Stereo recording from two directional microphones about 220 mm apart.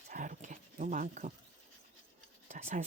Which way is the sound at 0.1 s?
35° right (ahead or behind).